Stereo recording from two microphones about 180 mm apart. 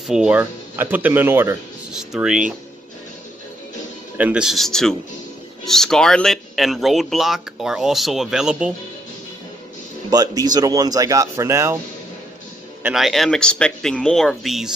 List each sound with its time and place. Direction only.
0.0 s speech: 5° right (ahead or behind)
4.2 s speech: 5° right (ahead or behind)
10.0 s speech: 20° right (ahead or behind)
12.8 s speech: centre (ahead or behind)